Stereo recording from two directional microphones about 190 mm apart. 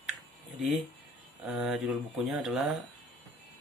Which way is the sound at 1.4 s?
Centre (ahead or behind).